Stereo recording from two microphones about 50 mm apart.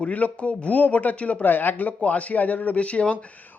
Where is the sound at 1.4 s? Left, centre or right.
Left.